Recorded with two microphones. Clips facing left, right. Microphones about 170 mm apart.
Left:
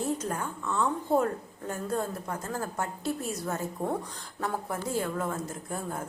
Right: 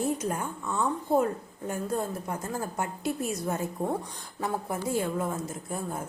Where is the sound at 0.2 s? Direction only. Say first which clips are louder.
Right 2 dB; 10° right (ahead or behind).